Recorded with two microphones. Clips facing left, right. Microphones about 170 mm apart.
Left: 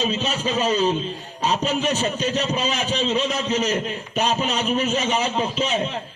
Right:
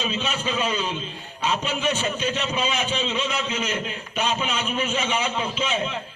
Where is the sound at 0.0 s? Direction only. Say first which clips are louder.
Left 4 dB; 35° left (ahead or behind).